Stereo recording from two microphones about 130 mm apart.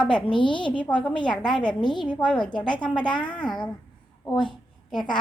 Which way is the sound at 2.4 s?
35° left (ahead or behind).